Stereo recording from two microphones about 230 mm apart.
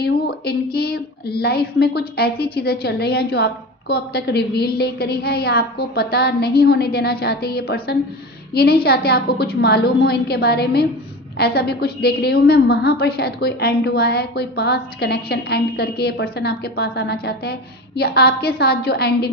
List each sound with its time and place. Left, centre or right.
0.0 s a woman's voice: left